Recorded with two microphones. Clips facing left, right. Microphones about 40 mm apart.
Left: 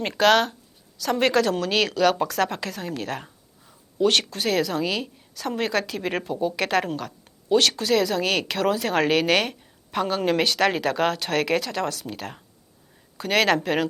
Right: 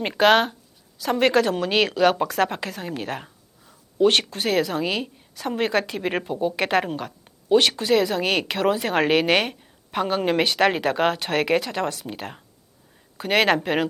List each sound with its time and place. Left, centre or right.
0.0 s a woman's voice: centre